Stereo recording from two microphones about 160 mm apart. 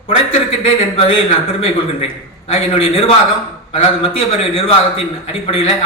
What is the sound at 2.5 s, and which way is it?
Speech, 35° left (ahead or behind).